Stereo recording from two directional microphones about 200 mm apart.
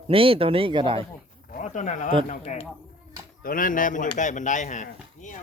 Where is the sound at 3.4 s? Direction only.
45° left (ahead or behind).